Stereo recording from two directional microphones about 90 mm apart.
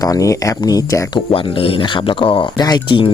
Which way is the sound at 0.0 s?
40° left (ahead or behind).